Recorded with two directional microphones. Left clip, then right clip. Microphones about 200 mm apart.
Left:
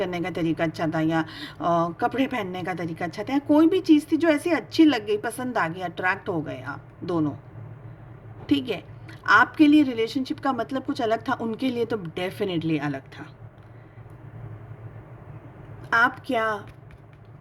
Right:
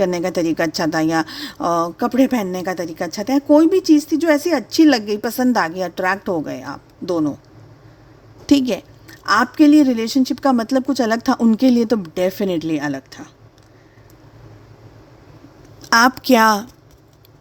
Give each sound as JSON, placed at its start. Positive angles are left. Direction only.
{"t": 0.0, "sound": "a woman's voice", "side_deg": -40}
{"t": 8.4, "sound": "a woman's voice", "side_deg": -45}
{"t": 15.8, "sound": "speech", "side_deg": -50}